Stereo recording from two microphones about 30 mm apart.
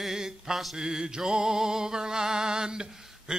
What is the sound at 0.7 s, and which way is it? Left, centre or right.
Male singing, right.